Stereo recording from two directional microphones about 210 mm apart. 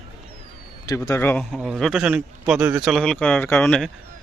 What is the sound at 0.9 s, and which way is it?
Speech, 15° left (ahead or behind).